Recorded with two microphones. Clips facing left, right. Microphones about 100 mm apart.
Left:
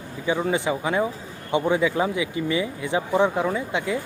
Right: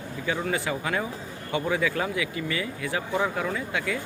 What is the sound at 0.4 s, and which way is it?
Speech, 20° left (ahead or behind).